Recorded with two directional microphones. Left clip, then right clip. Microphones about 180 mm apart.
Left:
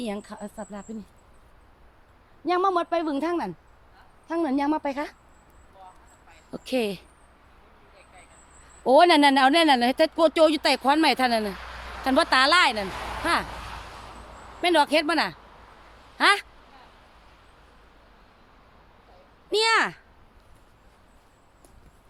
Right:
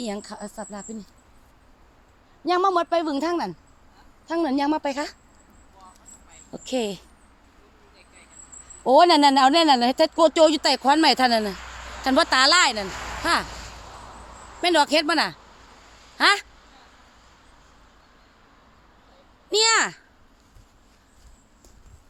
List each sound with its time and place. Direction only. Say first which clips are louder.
0.0 s speech: right 1 dB; 25° right (ahead or behind)
2.4 s speech: right 2 dB; 25° right (ahead or behind)
6.5 s speech: even; centre (ahead or behind)
8.8 s speech: right 2 dB; 15° right (ahead or behind); by 11.5 s 35° right (ahead or behind)
11.5 s a sound: even; 50° left (ahead or behind)
12.0 s speech: right 2 dB; 30° right (ahead or behind)
12.9 s a sound: even; 30° left (ahead or behind)
13.2 s speech: right 2 dB; 20° right (ahead or behind)
13.5 s a sound: left 2 dB; 5° left (ahead or behind)
14.6 s speech: right 1 dB; 20° right (ahead or behind)
19.5 s speech: right 2 dB; 15° right (ahead or behind)